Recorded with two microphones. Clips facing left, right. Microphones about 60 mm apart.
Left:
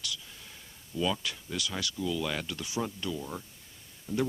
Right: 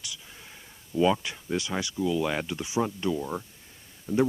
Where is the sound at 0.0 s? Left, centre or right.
Right.